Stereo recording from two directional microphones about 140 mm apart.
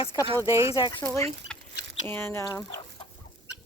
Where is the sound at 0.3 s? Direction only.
20° right (ahead or behind).